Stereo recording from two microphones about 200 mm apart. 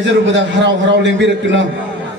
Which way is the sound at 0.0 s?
60° right (ahead or behind).